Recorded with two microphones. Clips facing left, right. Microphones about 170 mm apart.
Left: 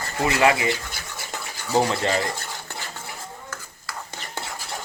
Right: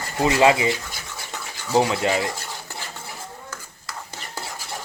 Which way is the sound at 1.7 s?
10° right (ahead or behind).